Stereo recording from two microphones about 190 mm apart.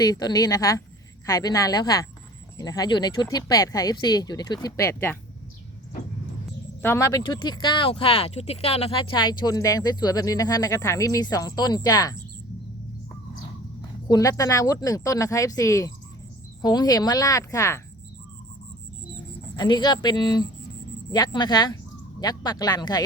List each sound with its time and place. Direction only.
0.0 s speech: 20° left (ahead or behind)
6.8 s speech: 15° left (ahead or behind)
14.1 s speech: 20° left (ahead or behind)
19.5 s speech: 20° left (ahead or behind)